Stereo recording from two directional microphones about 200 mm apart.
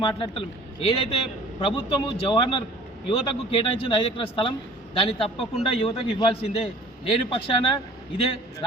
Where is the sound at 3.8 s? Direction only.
25° left (ahead or behind).